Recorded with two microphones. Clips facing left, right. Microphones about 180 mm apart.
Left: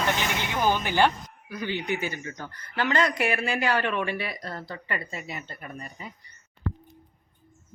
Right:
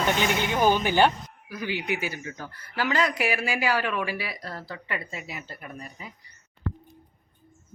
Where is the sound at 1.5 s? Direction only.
5° right (ahead or behind).